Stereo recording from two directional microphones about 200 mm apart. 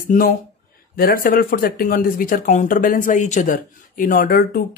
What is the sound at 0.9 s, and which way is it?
Speech, 50° left (ahead or behind).